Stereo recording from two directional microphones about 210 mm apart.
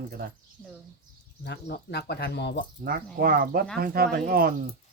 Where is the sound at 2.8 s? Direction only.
45° right (ahead or behind).